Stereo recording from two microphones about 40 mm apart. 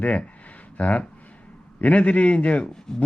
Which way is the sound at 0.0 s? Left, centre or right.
Left.